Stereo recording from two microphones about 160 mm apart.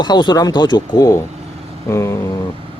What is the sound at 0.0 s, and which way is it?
Speech, 30° left (ahead or behind).